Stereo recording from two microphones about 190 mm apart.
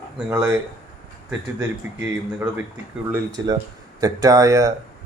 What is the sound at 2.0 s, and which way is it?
Speech, 10° right (ahead or behind).